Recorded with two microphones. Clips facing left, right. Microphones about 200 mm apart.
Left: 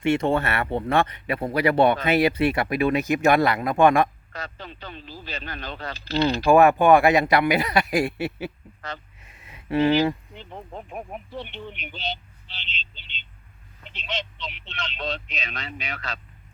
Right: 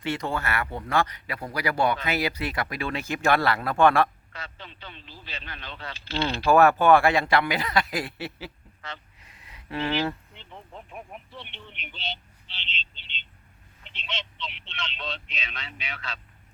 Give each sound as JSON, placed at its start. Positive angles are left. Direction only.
{"t": 0.0, "sound": "speech", "side_deg": 25}
{"t": 4.3, "sound": "speech", "side_deg": 40}
{"t": 6.4, "sound": "speech", "side_deg": 15}
{"t": 9.2, "sound": "a sound", "side_deg": 25}
{"t": 10.3, "sound": "speech", "side_deg": 45}